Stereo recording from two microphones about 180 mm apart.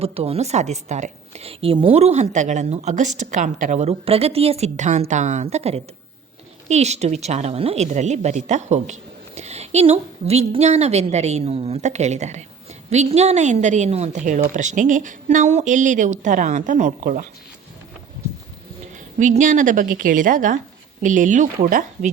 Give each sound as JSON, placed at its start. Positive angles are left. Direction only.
{"t": 0.0, "sound": "a woman's voice", "side_deg": -35}
{"t": 19.2, "sound": "a woman's voice", "side_deg": -45}